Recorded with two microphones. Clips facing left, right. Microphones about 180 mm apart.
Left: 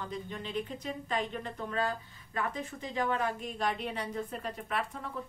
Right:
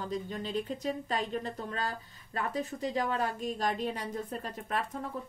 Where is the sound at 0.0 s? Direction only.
40° right (ahead or behind).